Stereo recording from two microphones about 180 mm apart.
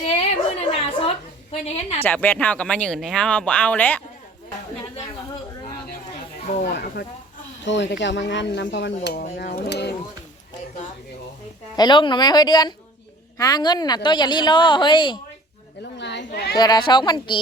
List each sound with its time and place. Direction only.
0.8 s a sound: 30° left (ahead or behind)
1.6 s a woman's voice: 35° left (ahead or behind)
2.0 s speech: 10° left (ahead or behind)
6.5 s speech: 45° left (ahead or behind)
7.6 s speech: 80° left
11.8 s a woman's voice: 25° left (ahead or behind)
15.8 s speech: 75° left (ahead or behind)
16.6 s a woman's voice: 20° left (ahead or behind)